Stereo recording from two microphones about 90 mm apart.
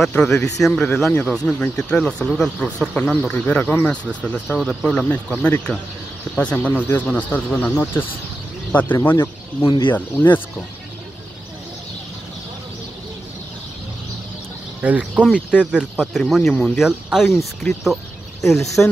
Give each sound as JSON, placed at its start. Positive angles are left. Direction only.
{"t": 0.1, "sound": "speech", "side_deg": 10}
{"t": 8.9, "sound": "speech", "side_deg": 25}
{"t": 9.6, "sound": "speech", "side_deg": 65}
{"t": 9.8, "sound": "speech", "side_deg": 20}
{"t": 14.8, "sound": "speech", "side_deg": -15}
{"t": 18.4, "sound": "speech", "side_deg": 0}